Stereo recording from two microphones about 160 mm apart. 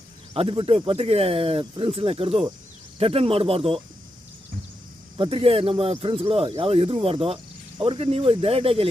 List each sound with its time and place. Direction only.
0.3 s speech: 35° right (ahead or behind)
5.1 s speech: 35° right (ahead or behind)